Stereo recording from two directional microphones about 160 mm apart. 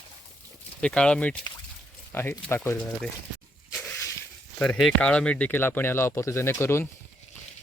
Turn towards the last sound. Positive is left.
turn(degrees=15)  # may be behind; listen again after turning